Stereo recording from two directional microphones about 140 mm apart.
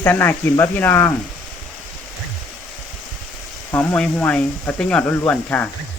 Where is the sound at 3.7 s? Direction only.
5° left (ahead or behind).